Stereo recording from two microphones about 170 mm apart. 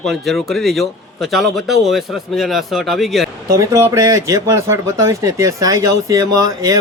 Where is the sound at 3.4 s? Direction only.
20° right (ahead or behind).